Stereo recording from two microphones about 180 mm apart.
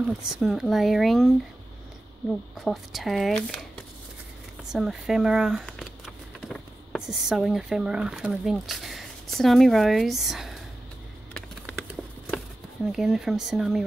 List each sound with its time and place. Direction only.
0.0 s speech: centre (ahead or behind)
2.6 s speech: centre (ahead or behind)
11.3 s typing: 5° left (ahead or behind)
12.9 s speech: centre (ahead or behind)